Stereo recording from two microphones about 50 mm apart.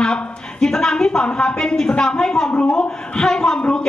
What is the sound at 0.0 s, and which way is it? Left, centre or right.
A woman's voice, centre.